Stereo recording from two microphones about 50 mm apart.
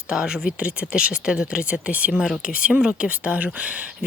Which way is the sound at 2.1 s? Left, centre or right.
Centre.